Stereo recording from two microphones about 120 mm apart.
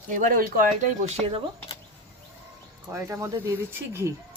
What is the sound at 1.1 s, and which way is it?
Speech, 60° right (ahead or behind).